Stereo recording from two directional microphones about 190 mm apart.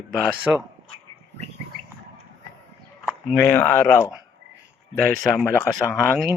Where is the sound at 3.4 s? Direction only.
10° left (ahead or behind).